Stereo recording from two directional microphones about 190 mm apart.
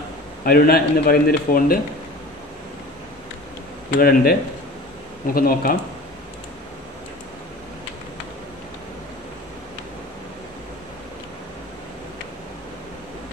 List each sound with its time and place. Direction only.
0.5 s a man's voice: 55° left (ahead or behind)
4.0 s a man's voice: 50° left (ahead or behind)